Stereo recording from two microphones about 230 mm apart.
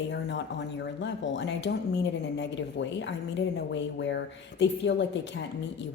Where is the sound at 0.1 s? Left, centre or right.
Left.